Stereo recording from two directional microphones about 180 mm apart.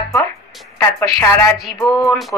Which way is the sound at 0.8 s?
15° left (ahead or behind).